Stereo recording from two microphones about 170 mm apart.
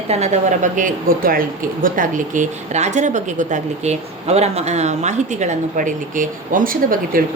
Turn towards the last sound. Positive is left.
turn(degrees=-55)  # may be behind; listen again after turning